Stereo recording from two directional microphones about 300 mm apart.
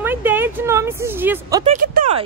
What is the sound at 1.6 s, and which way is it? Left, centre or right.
Speech, right.